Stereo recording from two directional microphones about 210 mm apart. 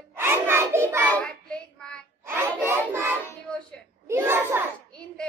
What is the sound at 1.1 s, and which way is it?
Child singing, 5° left (ahead or behind).